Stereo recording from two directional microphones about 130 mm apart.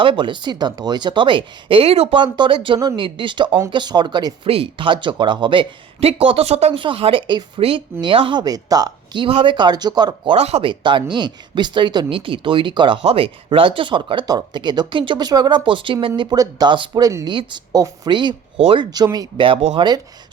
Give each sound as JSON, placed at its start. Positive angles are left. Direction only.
{"t": 0.0, "sound": "speech", "side_deg": -40}
{"t": 4.4, "sound": "speech", "side_deg": -45}
{"t": 9.2, "sound": "speech", "side_deg": -40}
{"t": 10.3, "sound": "speech", "side_deg": -50}
{"t": 10.7, "sound": "speech", "side_deg": -40}
{"t": 18.9, "sound": "speech", "side_deg": -30}
{"t": 19.4, "sound": "speech", "side_deg": -45}